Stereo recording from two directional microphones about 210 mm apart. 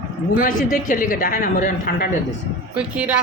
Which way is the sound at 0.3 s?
40° left (ahead or behind).